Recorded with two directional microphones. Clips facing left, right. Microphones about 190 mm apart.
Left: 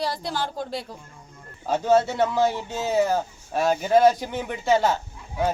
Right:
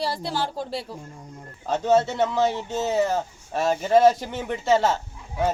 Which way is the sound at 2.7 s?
Centre (ahead or behind).